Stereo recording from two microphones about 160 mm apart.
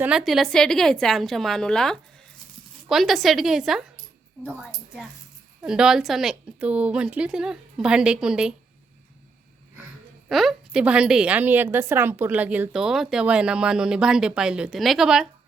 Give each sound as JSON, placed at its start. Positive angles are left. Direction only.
{"t": 0.0, "sound": "a woman's voice", "side_deg": -5}
{"t": 5.6, "sound": "a woman's voice", "side_deg": -5}
{"t": 10.2, "sound": "a woman's voice", "side_deg": 0}